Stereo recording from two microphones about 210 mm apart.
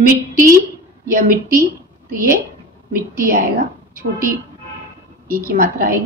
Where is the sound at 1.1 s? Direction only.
45° right (ahead or behind).